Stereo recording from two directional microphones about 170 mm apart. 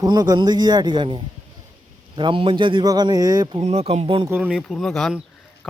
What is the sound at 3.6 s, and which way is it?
Speech, 35° right (ahead or behind).